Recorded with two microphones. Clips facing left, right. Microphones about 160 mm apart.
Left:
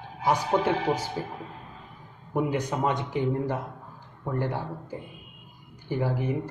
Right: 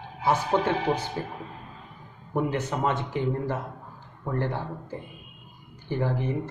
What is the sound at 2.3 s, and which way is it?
Speech, 15° left (ahead or behind).